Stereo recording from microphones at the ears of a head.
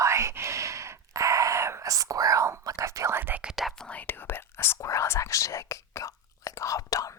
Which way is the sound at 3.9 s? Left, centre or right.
Left.